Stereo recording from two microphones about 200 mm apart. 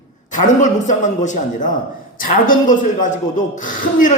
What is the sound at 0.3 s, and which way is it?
Speech, 40° left (ahead or behind).